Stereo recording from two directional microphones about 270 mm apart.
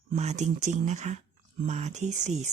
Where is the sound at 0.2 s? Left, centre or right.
Right.